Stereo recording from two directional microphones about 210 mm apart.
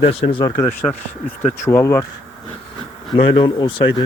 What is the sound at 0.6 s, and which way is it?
Speech, 10° left (ahead or behind).